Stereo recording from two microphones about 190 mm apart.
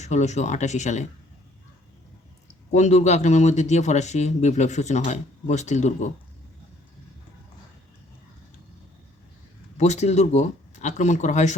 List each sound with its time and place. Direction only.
0.0 s speech: 35° left (ahead or behind)
2.7 s speech: 35° left (ahead or behind)
9.7 s speech: 40° left (ahead or behind)